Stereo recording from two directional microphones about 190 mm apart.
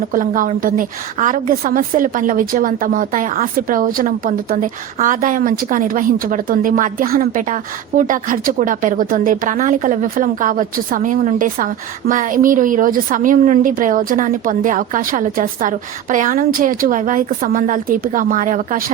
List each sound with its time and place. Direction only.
0.1 s a woman's voice: 45° right (ahead or behind)